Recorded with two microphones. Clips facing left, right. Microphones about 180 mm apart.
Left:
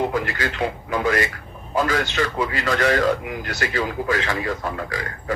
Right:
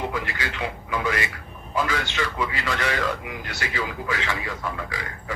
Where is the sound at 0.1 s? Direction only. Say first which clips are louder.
Left 5 dB; 45° left (ahead or behind).